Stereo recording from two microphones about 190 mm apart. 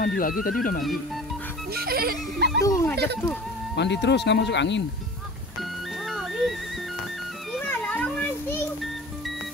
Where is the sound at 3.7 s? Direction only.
65° left (ahead or behind).